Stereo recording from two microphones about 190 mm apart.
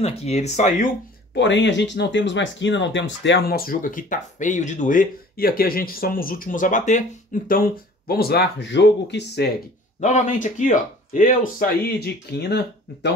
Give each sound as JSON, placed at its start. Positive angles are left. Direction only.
{"t": 0.0, "sound": "speech", "side_deg": 35}
{"t": 1.3, "sound": "speech", "side_deg": 70}
{"t": 9.9, "sound": "speech", "side_deg": 40}
{"t": 12.0, "sound": "speech", "side_deg": 60}